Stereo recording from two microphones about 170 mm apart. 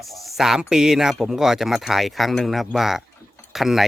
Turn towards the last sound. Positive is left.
turn(degrees=0)  # may be behind; listen again after turning